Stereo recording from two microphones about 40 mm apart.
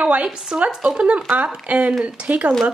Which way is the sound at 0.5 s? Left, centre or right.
Centre.